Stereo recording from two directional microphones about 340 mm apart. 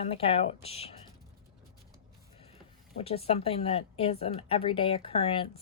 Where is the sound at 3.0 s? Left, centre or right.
Centre.